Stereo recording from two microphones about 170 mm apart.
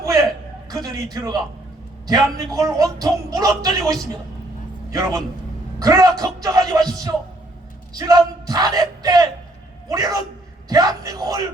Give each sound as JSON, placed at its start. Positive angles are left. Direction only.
{"t": 0.0, "sound": "a sound", "side_deg": -20}
{"t": 0.7, "sound": "a man's voice", "side_deg": -20}
{"t": 5.8, "sound": "a man's voice", "side_deg": -20}